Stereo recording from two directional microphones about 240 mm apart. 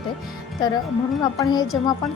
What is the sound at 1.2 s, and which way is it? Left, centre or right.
Speech, centre.